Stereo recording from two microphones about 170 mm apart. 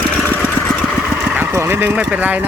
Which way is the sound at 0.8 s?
5° right (ahead or behind).